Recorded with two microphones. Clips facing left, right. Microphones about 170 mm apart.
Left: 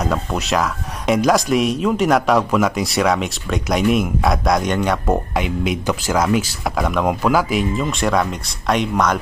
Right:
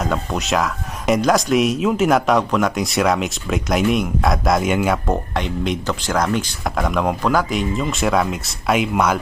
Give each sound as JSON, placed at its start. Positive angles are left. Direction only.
{"t": 0.0, "sound": "speech", "side_deg": 0}
{"t": 5.0, "sound": "speech", "side_deg": 5}